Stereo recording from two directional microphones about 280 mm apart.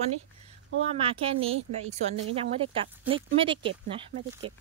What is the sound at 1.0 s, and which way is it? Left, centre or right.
Speech, centre.